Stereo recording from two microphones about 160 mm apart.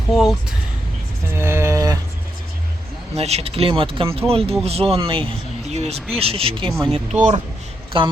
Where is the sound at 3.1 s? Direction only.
40° right (ahead or behind).